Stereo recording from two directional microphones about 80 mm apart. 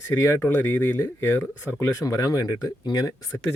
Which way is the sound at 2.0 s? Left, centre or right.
Left.